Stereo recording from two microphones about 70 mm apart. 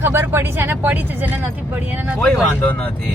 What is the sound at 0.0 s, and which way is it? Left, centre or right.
Speech, right.